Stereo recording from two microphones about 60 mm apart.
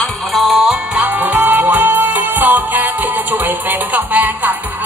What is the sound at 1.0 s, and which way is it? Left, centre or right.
Music, centre.